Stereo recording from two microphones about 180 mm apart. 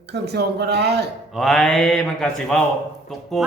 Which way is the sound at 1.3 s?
Centre (ahead or behind).